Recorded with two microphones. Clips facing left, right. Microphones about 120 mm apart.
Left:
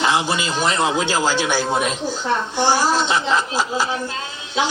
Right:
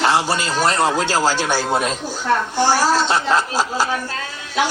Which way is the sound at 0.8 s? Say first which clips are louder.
Right 1 dB; 15° left (ahead or behind).